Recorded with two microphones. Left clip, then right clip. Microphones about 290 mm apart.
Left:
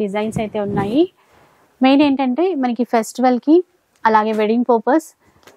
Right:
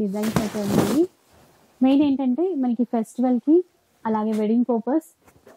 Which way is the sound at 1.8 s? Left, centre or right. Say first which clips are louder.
Left 6 dB; centre.